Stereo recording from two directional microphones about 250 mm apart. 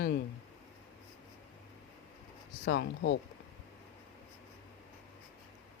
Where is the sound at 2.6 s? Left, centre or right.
Left.